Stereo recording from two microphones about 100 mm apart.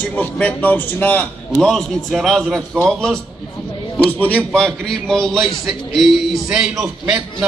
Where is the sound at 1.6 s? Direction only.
5° left (ahead or behind).